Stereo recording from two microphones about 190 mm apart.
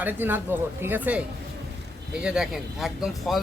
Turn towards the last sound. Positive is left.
turn(degrees=0)  # may be behind; listen again after turning